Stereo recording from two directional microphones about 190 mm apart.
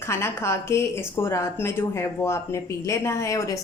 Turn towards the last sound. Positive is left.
turn(degrees=15)  # may be behind; listen again after turning